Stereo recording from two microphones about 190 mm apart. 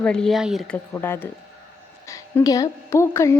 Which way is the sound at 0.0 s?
5° left (ahead or behind).